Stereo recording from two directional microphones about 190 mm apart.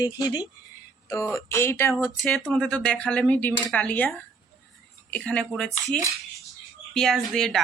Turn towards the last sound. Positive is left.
turn(degrees=0)  # may be behind; listen again after turning